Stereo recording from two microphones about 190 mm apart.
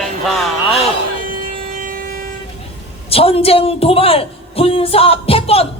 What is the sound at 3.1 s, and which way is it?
A man's voice, 30° left (ahead or behind).